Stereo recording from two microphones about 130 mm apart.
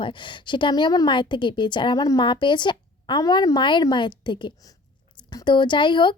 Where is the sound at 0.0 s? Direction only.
40° left (ahead or behind).